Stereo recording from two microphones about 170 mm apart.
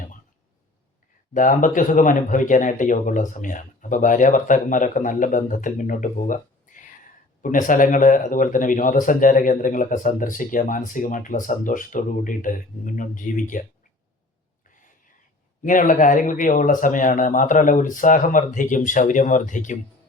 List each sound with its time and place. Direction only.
1.3 s speech: 50° left (ahead or behind)
7.4 s speech: 50° left (ahead or behind)
15.6 s speech: 50° left (ahead or behind)